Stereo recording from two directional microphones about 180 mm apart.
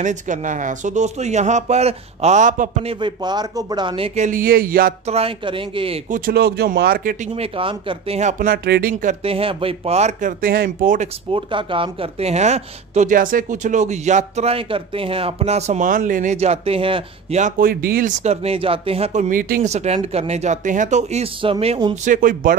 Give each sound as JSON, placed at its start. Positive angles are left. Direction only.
{"t": 0.0, "sound": "speech", "side_deg": -45}
{"t": 2.9, "sound": "speech", "side_deg": -25}
{"t": 5.0, "sound": "speech", "side_deg": -35}
{"t": 6.0, "sound": "speech", "side_deg": -50}
{"t": 7.3, "sound": "speech", "side_deg": -30}
{"t": 9.0, "sound": "speech", "side_deg": -30}
{"t": 10.4, "sound": "a man's voice", "side_deg": -55}
{"t": 11.3, "sound": "speech", "side_deg": -30}
{"t": 17.4, "sound": "a man's voice", "side_deg": -50}
{"t": 18.2, "sound": "speech", "side_deg": -35}
{"t": 22.0, "sound": "a man's voice", "side_deg": -45}